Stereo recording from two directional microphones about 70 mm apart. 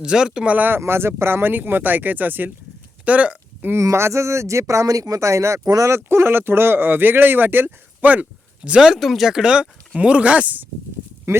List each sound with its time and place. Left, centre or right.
0.0 s speech: centre
0.5 s speech: right
0.8 s speech: right
3.0 s hiccup: centre
3.8 s speech: right; by 8.8 s centre
8.8 s speech: centre; by 10.7 s right